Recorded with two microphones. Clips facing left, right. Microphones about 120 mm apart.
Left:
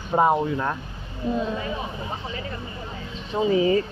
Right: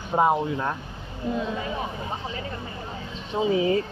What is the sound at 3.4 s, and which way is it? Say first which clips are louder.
Speech: left 2 dB; centre (ahead or behind).